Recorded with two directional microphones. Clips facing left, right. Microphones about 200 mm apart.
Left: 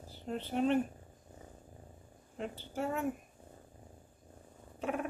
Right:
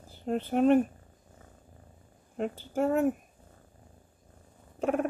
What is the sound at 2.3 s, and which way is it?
Speech, 45° right (ahead or behind).